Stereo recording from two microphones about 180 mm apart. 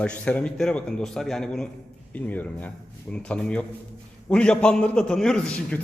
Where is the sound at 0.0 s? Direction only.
5° left (ahead or behind).